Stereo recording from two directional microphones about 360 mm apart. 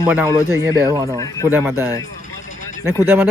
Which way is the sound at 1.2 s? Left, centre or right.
Centre.